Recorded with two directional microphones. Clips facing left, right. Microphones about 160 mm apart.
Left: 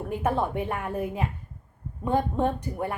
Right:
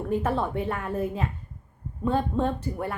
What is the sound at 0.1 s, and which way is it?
A woman's voice, 15° left (ahead or behind).